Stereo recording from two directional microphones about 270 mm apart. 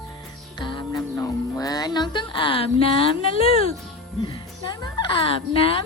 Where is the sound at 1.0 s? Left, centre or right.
Centre.